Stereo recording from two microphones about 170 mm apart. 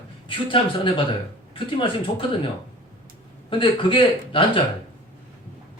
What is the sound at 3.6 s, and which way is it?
Speech, 30° left (ahead or behind).